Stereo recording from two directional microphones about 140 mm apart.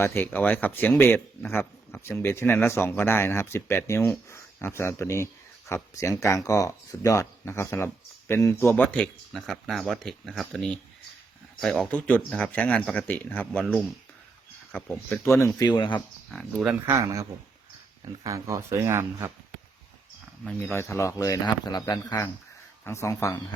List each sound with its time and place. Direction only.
0.0 s speech: 20° left (ahead or behind)
15.3 s speech: 20° left (ahead or behind)
15.7 s speech: 35° left (ahead or behind)
16.3 s speech: centre (ahead or behind)
16.8 s speech: 20° right (ahead or behind)
20.6 s speech: 15° left (ahead or behind)
22.8 s speech: 20° left (ahead or behind)